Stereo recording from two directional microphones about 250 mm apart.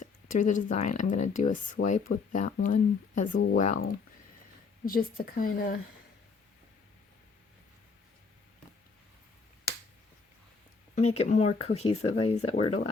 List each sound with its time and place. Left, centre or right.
0.0 s speech: left
4.9 s speech: left
10.9 s speech: left